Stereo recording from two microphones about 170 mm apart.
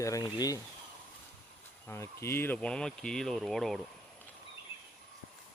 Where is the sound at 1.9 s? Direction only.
15° left (ahead or behind).